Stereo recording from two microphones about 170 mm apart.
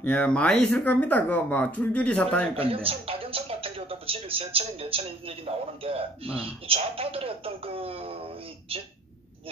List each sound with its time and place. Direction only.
0.0 s speech: 5° left (ahead or behind)
2.5 s a sound: 35° right (ahead or behind)
5.9 s speech: 35° right (ahead or behind)